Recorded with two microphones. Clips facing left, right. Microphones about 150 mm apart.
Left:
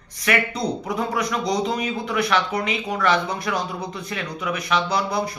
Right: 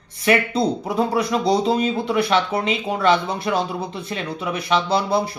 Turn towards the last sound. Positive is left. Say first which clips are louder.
# right 3 dB
turn(degrees=-30)  # may be behind; listen again after turning